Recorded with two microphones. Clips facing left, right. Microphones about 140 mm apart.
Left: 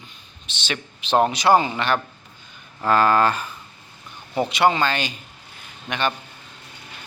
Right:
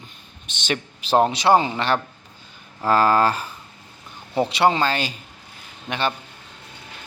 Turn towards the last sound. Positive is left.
turn(degrees=-30)  # may be behind; listen again after turning